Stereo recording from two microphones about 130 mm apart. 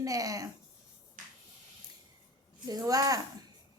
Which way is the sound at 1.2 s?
85° right.